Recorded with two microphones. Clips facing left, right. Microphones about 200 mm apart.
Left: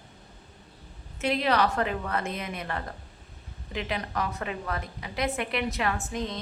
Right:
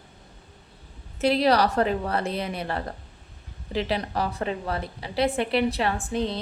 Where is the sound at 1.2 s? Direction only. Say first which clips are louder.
Right 5 dB; 35° right (ahead or behind).